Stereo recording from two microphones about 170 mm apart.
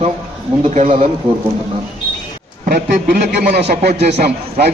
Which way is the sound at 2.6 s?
60° right (ahead or behind).